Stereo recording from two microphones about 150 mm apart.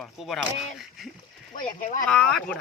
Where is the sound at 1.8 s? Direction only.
60° left (ahead or behind).